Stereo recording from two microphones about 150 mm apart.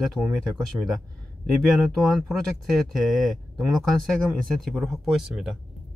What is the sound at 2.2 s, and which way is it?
Speech, centre (ahead or behind).